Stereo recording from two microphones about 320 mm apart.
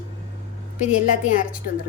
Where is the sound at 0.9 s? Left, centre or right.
Left.